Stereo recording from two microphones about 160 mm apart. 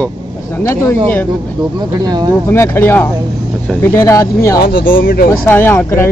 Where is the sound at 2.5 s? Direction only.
15° left (ahead or behind).